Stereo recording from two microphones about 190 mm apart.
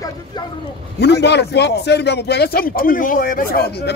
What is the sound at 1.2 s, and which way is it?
Speech, 65° left (ahead or behind).